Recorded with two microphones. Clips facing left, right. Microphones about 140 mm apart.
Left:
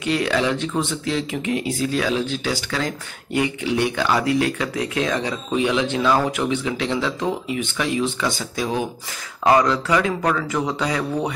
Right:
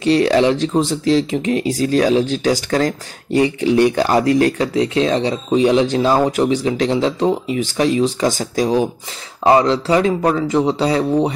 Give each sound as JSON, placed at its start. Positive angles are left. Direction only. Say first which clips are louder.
{"t": 0.0, "sound": "speech", "louder": "right 8 dB", "side_deg": -35}